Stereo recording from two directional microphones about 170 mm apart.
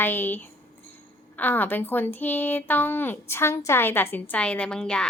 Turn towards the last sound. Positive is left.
turn(degrees=5)  # may be behind; listen again after turning